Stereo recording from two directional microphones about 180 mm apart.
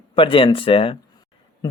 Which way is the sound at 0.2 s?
30° left (ahead or behind).